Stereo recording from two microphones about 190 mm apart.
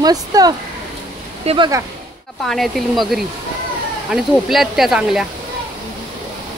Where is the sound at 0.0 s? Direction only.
20° right (ahead or behind).